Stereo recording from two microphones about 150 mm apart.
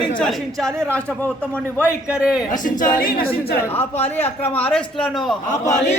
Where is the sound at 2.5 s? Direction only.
60° left (ahead or behind); by 3.6 s 90° left.